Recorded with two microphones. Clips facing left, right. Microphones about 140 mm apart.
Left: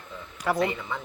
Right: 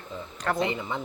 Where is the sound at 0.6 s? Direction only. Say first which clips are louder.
Left 1 dB; 25° right (ahead or behind).